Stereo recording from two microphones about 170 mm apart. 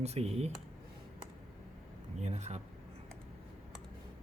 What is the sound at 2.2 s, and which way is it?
Speech, 40° right (ahead or behind).